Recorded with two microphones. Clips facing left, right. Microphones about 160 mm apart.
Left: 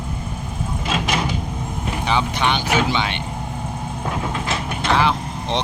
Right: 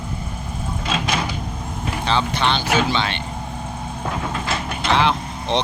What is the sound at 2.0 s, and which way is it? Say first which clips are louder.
Vehicle: even; 15° left (ahead or behind).